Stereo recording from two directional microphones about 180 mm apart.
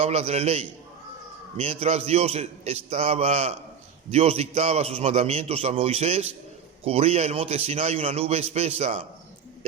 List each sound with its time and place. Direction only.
0.0 s a man's voice: 35° right (ahead or behind)